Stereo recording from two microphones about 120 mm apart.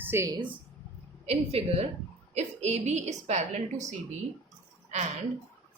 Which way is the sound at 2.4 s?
70° right (ahead or behind).